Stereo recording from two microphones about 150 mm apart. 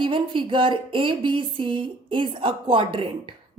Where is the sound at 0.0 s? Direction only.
35° right (ahead or behind).